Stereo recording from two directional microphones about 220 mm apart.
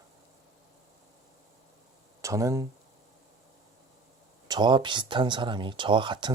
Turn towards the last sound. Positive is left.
turn(degrees=-20)  # may be behind; listen again after turning